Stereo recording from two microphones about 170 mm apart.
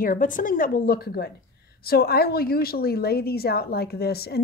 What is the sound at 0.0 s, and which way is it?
Speech, 50° left (ahead or behind).